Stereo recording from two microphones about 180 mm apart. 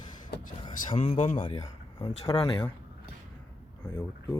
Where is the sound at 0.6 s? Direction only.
30° left (ahead or behind).